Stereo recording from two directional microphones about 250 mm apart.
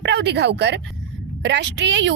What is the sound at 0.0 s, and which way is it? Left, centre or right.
A woman's voice, right.